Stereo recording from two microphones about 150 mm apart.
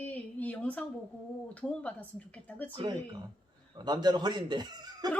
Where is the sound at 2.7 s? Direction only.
35° right (ahead or behind).